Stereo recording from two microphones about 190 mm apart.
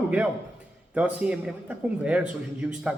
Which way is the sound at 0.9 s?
5° right (ahead or behind).